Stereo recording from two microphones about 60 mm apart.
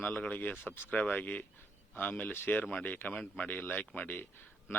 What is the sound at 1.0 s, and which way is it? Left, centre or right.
Speech, left.